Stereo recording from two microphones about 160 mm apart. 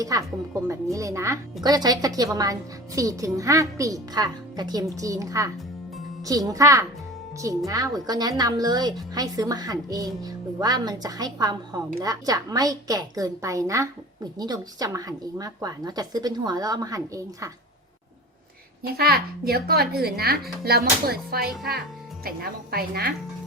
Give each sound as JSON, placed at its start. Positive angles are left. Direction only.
{"t": 0.0, "sound": "a woman's voice", "side_deg": -20}
{"t": 18.8, "sound": "speech", "side_deg": -75}